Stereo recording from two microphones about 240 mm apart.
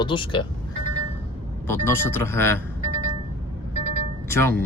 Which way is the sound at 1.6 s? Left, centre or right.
Centre.